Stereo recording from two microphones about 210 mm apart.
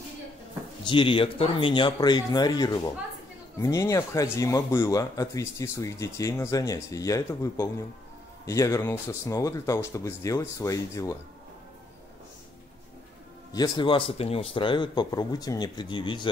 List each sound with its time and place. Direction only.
0.8 s speech: 25° left (ahead or behind)
13.5 s speech: 20° left (ahead or behind)